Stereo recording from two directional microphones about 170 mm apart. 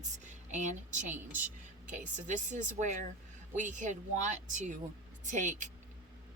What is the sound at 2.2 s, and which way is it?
Speech, 45° right (ahead or behind).